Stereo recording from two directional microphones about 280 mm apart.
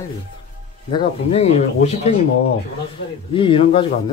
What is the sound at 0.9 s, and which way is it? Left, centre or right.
Speech, centre.